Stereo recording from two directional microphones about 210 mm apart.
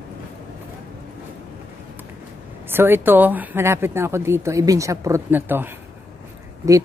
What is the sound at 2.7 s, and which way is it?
Speech, 10° right (ahead or behind).